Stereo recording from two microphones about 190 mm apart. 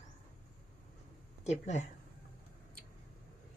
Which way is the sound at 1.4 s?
35° left (ahead or behind).